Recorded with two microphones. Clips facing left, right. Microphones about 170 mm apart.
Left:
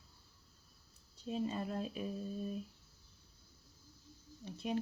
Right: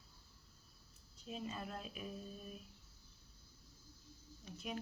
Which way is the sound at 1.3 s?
35° left (ahead or behind).